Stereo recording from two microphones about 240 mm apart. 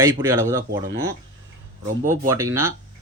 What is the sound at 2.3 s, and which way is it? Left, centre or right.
Speech, centre.